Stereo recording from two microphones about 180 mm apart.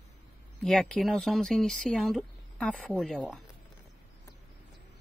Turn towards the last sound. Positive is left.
turn(degrees=5)  # may be behind; listen again after turning